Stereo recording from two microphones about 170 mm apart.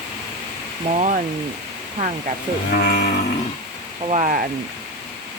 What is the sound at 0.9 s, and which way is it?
Speech, 45° right (ahead or behind).